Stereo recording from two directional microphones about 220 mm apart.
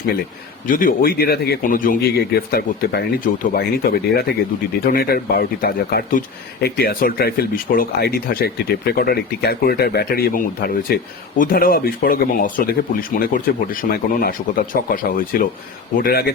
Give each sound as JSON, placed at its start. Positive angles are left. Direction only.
{"t": 0.7, "sound": "speech", "side_deg": 40}